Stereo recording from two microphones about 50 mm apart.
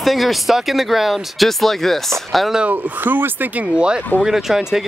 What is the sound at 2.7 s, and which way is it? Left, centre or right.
Speech, right.